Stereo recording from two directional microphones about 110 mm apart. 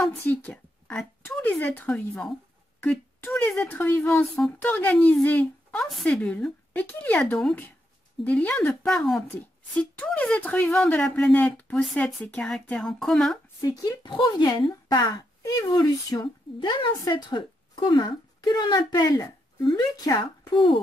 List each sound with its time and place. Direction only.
0.0 s a woman's voice: 15° left (ahead or behind)
4.9 s speech: 5° left (ahead or behind)
5.2 s a woman's voice: 15° left (ahead or behind)
8.2 s a woman's voice: 15° left (ahead or behind)
9.8 s a woman's voice: 10° left (ahead or behind)
13.6 s speech: 30° left (ahead or behind)
14.0 s speech: 45° left (ahead or behind)
16.5 s a woman's voice: 50° left (ahead or behind)
20.5 s a woman's voice: 50° left (ahead or behind)